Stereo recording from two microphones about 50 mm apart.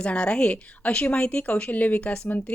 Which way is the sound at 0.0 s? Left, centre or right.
Left.